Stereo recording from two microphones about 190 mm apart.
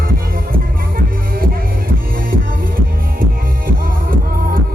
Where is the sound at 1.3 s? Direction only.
50° right (ahead or behind).